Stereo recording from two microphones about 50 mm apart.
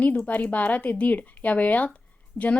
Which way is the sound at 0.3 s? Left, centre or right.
Left.